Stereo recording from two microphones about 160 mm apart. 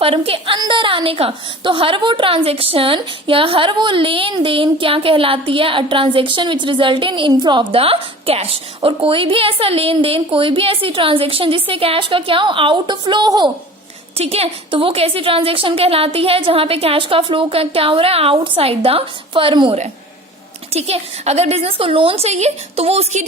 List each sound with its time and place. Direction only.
0.0 s a woman's voice: 35° right (ahead or behind)
14.2 s a woman's voice: 40° right (ahead or behind)